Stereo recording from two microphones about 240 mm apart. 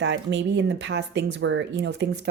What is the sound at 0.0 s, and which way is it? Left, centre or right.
Speech, right.